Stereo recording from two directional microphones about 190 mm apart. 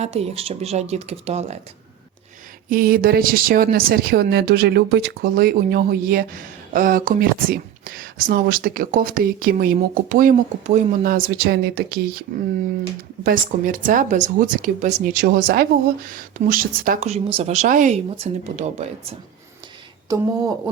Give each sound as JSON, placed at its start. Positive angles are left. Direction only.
{"t": 0.0, "sound": "a woman's voice", "side_deg": -35}
{"t": 2.6, "sound": "speech", "side_deg": -50}
{"t": 13.2, "sound": "a woman's voice", "side_deg": -45}
{"t": 20.1, "sound": "speech", "side_deg": -20}